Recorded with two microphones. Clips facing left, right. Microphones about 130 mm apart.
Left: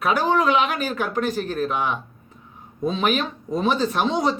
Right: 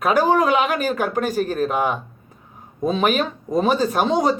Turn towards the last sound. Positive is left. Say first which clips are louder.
# right 3 dB
turn(degrees=-45)  # may be behind; listen again after turning